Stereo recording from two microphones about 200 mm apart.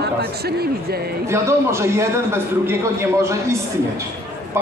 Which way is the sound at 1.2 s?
15° right (ahead or behind).